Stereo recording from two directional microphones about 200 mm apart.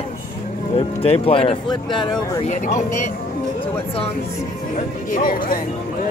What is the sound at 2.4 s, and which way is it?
Speech, 40° left (ahead or behind).